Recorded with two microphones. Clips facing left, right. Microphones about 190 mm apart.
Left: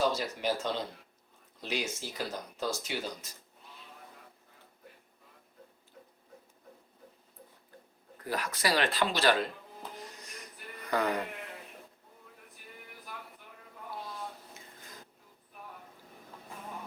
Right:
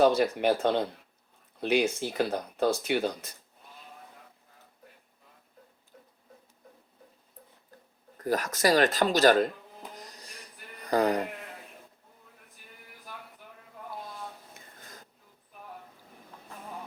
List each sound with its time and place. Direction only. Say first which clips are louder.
0.0 s speech: right 8 dB; 60° right (ahead or behind)
8.2 s speech: right 7 dB; 45° right (ahead or behind)
9.9 s printer: left 1 dB; 40° right (ahead or behind)
10.8 s speech: right 5 dB; 35° right (ahead or behind)